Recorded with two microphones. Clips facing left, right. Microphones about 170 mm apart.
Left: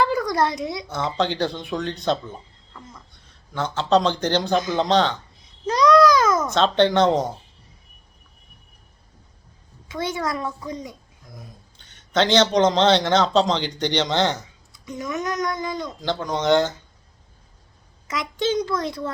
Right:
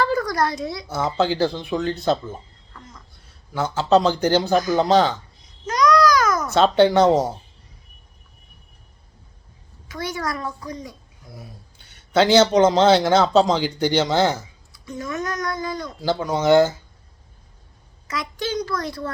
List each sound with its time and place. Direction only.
0.0 s a sound: 15° left (ahead or behind)
0.3 s speech: 20° left (ahead or behind)
0.9 s speech: 5° right (ahead or behind)
5.6 s babbling: 30° left (ahead or behind)
6.5 s speech: 10° right (ahead or behind)
9.9 s speech: 25° left (ahead or behind)
11.3 s a man's voice: 5° right (ahead or behind)
14.7 s speech: 15° left (ahead or behind)
16.0 s speech: 5° right (ahead or behind)
18.1 s speech: 20° left (ahead or behind)